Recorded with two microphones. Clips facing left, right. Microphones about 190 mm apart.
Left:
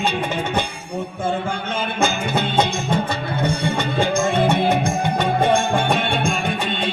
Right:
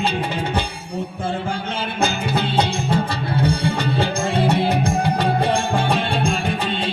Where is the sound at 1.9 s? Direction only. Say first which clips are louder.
Even; 35° right (ahead or behind).